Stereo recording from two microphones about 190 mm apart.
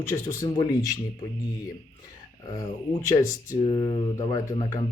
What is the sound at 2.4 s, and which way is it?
Speech, 20° left (ahead or behind).